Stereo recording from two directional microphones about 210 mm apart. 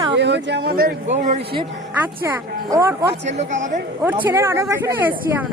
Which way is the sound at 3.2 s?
35° right (ahead or behind).